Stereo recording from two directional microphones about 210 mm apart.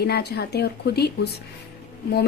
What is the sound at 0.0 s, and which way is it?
Speech, 50° left (ahead or behind).